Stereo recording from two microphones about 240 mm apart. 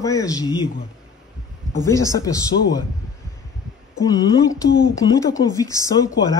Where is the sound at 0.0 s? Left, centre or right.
Centre.